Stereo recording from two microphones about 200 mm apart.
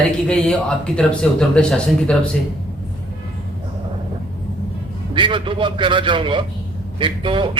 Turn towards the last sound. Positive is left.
turn(degrees=-25)  # may be behind; listen again after turning